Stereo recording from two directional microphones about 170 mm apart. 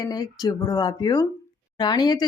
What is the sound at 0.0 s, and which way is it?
Speech, 20° left (ahead or behind).